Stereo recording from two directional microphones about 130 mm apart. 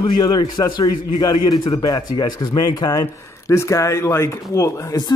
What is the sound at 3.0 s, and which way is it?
Speech, 20° left (ahead or behind).